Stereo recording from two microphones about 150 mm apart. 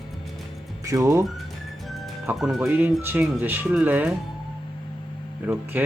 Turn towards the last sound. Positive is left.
turn(degrees=-5)  # may be behind; listen again after turning